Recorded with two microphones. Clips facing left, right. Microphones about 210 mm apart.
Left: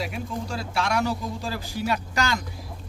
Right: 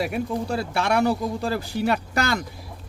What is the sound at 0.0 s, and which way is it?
Speech, 60° right (ahead or behind).